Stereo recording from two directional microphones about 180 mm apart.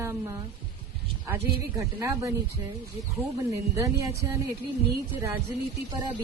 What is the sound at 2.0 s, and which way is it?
Speech, 15° right (ahead or behind).